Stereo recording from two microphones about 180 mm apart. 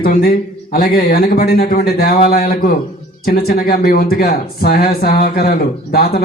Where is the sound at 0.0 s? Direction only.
55° left (ahead or behind).